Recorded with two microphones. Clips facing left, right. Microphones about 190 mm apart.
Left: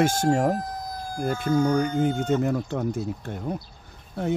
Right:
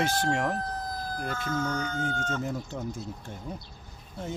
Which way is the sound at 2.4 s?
65° left (ahead or behind).